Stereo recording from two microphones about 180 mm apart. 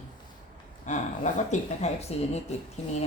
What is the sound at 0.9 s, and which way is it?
Speech, 45° left (ahead or behind).